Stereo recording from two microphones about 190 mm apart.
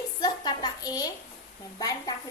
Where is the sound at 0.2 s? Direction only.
20° left (ahead or behind).